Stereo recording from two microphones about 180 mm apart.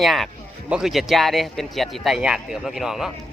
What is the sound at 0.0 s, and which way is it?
Speech, centre (ahead or behind).